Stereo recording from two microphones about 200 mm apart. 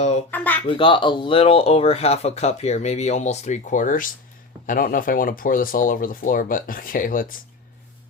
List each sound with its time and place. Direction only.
0.0 s a sound: 35° left (ahead or behind)
0.3 s speech: 10° left (ahead or behind)
0.7 s speech: 25° left (ahead or behind); by 7.3 s 45° left (ahead or behind)